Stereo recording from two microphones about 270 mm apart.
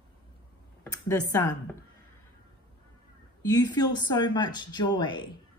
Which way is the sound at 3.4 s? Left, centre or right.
Centre.